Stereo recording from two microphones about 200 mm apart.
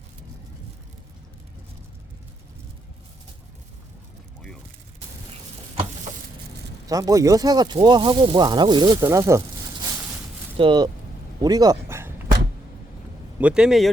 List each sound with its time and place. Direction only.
6.8 s speech: 15° right (ahead or behind)
10.6 s speech: 25° right (ahead or behind)
11.4 s a sound: 20° right (ahead or behind)
13.4 s speech: 5° right (ahead or behind)